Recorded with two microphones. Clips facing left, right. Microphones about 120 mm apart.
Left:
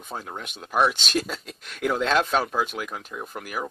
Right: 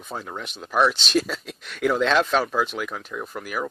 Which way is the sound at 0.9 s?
50° left (ahead or behind).